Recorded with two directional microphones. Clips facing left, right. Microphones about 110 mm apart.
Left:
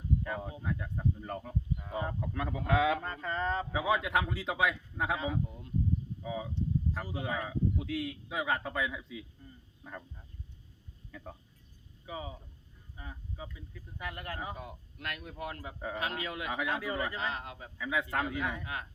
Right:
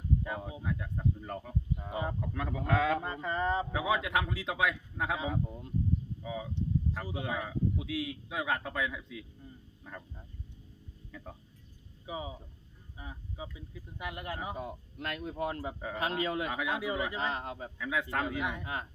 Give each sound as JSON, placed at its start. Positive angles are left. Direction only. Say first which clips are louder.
{"t": 0.3, "sound": "a man's voice", "louder": "even", "side_deg": -10}
{"t": 3.0, "sound": "speech", "louder": "right 2 dB", "side_deg": -15}
{"t": 3.7, "sound": "a man's voice", "louder": "left 1 dB", "side_deg": 0}
{"t": 5.5, "sound": "speech", "louder": "right 4 dB", "side_deg": -30}
{"t": 6.2, "sound": "a man's voice", "louder": "left 1 dB", "side_deg": 0}
{"t": 11.1, "sound": "speech", "louder": "left 1 dB", "side_deg": 0}
{"t": 12.0, "sound": "speech", "louder": "right 2 dB", "side_deg": -15}
{"t": 14.5, "sound": "a man's voice", "louder": "right 5 dB", "side_deg": -25}
{"t": 16.5, "sound": "speech", "louder": "right 1 dB", "side_deg": -5}
{"t": 17.3, "sound": "a man's voice", "louder": "right 4 dB", "side_deg": -30}
{"t": 17.7, "sound": "a man's voice", "louder": "left 1 dB", "side_deg": 0}
{"t": 18.6, "sound": "speech", "louder": "right 2 dB", "side_deg": -25}